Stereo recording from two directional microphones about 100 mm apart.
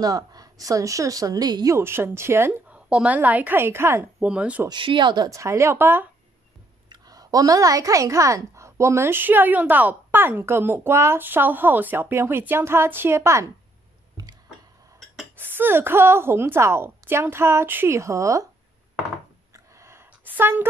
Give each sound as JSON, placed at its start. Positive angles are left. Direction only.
{"t": 0.0, "sound": "a woman's voice", "side_deg": -40}
{"t": 1.8, "sound": "a woman's voice", "side_deg": -25}
{"t": 2.9, "sound": "a woman's voice", "side_deg": -15}
{"t": 4.2, "sound": "a woman's voice", "side_deg": -10}
{"t": 4.6, "sound": "speech", "side_deg": -55}
{"t": 5.3, "sound": "a woman's voice", "side_deg": -30}
{"t": 6.9, "sound": "a woman's voice", "side_deg": -40}
{"t": 15.3, "sound": "a woman's voice", "side_deg": -20}
{"t": 19.5, "sound": "a sound", "side_deg": -30}